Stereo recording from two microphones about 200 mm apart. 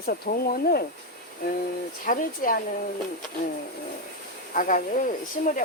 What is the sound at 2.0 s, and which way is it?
Speech, 45° left (ahead or behind).